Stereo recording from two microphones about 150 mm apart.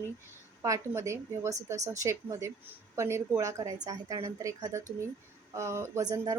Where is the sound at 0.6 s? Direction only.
20° right (ahead or behind).